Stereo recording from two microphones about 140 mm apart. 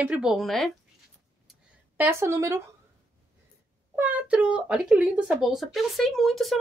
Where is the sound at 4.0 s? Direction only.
10° right (ahead or behind).